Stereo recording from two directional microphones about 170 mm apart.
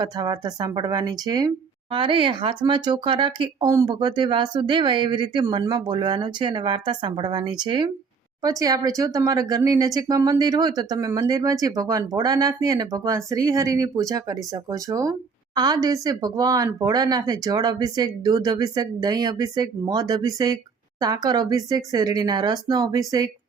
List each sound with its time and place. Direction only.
0.0 s speech: 25° right (ahead or behind)